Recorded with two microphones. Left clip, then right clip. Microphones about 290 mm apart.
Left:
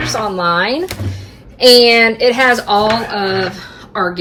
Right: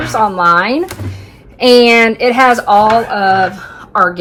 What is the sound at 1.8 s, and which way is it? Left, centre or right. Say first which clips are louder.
Speech: right 1 dB; centre.